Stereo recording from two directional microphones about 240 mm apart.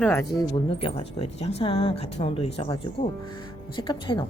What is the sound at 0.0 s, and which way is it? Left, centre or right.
Speech, centre.